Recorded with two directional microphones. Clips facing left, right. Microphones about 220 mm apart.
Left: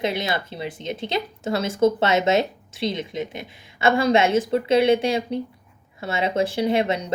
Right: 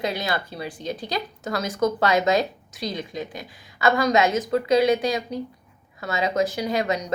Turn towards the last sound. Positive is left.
turn(degrees=25)  # may be behind; listen again after turning